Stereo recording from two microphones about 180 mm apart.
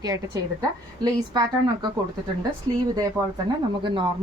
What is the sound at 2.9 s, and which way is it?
A woman's voice, 20° right (ahead or behind).